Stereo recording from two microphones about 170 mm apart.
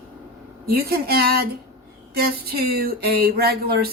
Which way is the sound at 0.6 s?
65° right (ahead or behind).